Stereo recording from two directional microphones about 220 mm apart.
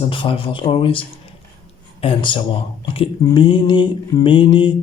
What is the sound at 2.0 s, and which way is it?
Speech, 25° left (ahead or behind).